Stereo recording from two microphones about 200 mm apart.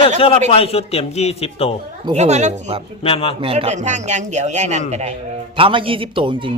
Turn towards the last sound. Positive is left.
turn(degrees=-25)  # may be behind; listen again after turning